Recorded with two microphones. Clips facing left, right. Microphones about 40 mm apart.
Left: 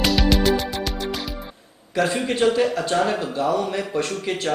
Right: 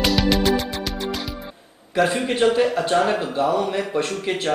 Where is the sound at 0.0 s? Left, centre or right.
Centre.